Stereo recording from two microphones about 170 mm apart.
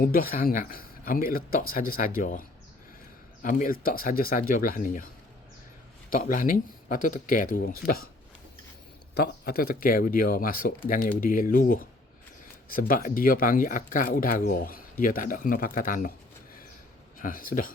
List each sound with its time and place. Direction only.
0.0 s speech: 55° left (ahead or behind)
3.4 s speech: 55° left (ahead or behind)
6.1 s speech: 55° left (ahead or behind)
9.1 s speech: 70° left (ahead or behind)
17.2 s speech: 55° left (ahead or behind)